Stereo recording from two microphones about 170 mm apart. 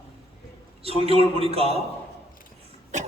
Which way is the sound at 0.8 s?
35° right (ahead or behind).